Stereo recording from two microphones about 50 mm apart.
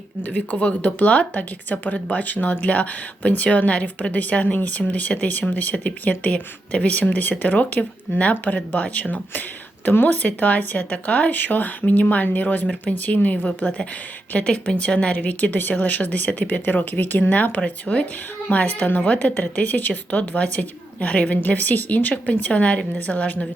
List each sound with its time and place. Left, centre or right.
0.2 s speech: left